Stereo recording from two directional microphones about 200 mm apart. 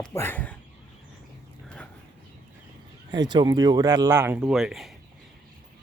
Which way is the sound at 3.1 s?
20° right (ahead or behind).